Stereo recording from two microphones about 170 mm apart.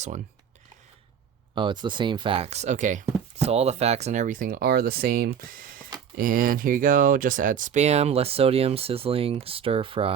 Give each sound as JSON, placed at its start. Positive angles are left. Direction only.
{"t": 1.5, "sound": "speech", "side_deg": -25}